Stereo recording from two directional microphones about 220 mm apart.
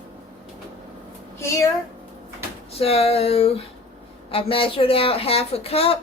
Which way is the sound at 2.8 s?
25° left (ahead or behind).